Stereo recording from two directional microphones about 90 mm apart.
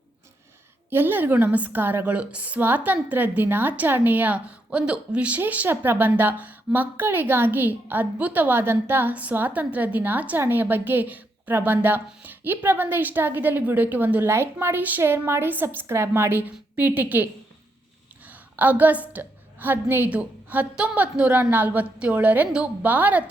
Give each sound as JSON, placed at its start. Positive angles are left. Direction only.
{"t": 0.9, "sound": "a woman's voice", "side_deg": -25}
{"t": 18.5, "sound": "a woman's voice", "side_deg": -20}